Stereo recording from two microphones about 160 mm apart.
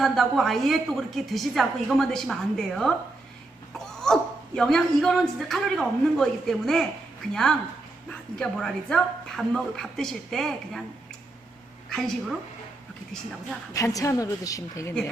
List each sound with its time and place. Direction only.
0.0 s a woman's voice: centre (ahead or behind)
4.0 s a woman's voice: 5° left (ahead or behind)
11.9 s a woman's voice: 5° left (ahead or behind)
13.7 s a woman's voice: 20° left (ahead or behind)